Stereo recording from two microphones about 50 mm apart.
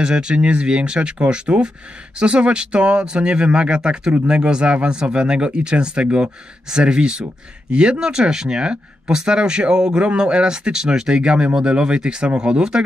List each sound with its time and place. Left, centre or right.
0.0 s speech: centre